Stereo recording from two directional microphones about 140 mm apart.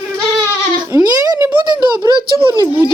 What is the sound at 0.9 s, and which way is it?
Speech, 25° right (ahead or behind).